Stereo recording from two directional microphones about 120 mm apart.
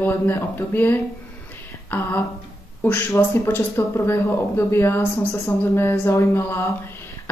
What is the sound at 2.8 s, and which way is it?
Speech, 20° left (ahead or behind).